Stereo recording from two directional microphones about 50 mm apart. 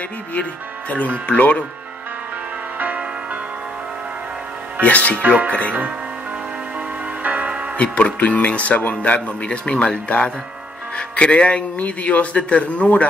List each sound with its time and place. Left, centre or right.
0.3 s a man's voice: left
4.8 s a man's voice: left
7.2 s music: right
7.7 s a man's voice: left